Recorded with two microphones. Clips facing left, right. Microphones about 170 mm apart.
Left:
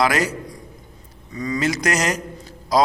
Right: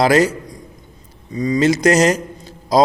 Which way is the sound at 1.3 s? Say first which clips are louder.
Right 7 dB; 25° right (ahead or behind).